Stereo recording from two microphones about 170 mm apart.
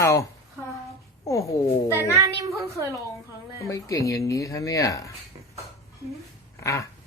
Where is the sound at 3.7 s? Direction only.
20° left (ahead or behind).